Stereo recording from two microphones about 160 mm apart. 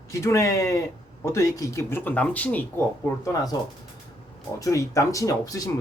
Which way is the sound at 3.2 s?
25° left (ahead or behind).